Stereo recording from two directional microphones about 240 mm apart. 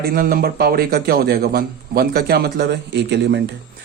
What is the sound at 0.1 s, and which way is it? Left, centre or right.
Speech, right.